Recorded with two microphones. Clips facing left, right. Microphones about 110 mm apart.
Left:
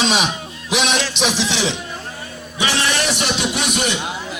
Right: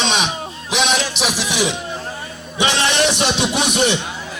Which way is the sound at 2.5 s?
20° right (ahead or behind).